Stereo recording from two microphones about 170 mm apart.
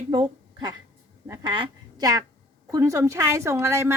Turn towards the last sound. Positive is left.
turn(degrees=-15)  # may be behind; listen again after turning